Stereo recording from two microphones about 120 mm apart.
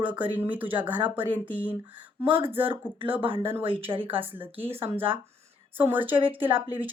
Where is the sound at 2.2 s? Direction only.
50° right (ahead or behind).